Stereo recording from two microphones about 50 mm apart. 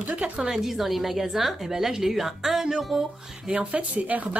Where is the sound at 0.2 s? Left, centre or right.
Centre.